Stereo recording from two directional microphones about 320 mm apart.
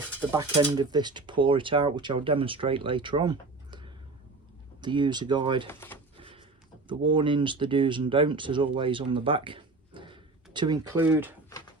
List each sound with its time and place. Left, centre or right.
0.2 s speech: centre
5.6 s speech: centre
6.1 s a sound: centre
6.8 s speech: centre